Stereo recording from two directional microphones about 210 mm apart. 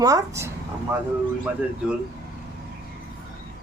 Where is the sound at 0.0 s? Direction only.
15° right (ahead or behind).